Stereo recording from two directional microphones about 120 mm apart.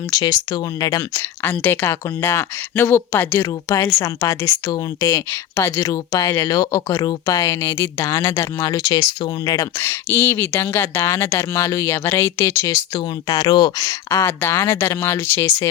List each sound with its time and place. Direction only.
0.1 s speech: 30° left (ahead or behind)
1.5 s speech: 15° left (ahead or behind); by 9.6 s 35° left (ahead or behind)
9.7 s speech: 20° left (ahead or behind)
13.0 s speech: 35° left (ahead or behind)
14.2 s speech: 20° left (ahead or behind)